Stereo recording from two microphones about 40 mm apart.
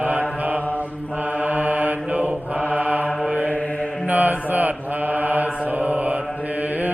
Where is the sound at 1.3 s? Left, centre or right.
Right.